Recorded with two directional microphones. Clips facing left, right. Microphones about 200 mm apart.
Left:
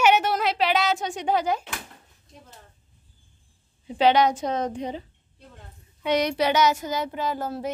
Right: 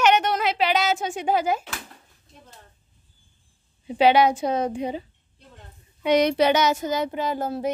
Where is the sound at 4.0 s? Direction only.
10° right (ahead or behind).